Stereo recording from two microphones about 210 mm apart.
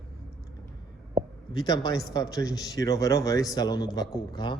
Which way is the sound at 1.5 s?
20° left (ahead or behind).